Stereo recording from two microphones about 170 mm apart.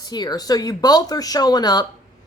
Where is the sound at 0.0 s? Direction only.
25° left (ahead or behind).